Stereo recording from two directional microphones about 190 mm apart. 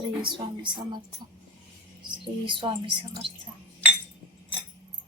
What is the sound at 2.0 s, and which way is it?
A woman's voice, 25° right (ahead or behind).